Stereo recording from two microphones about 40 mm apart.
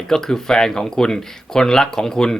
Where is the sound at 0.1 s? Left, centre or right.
Centre.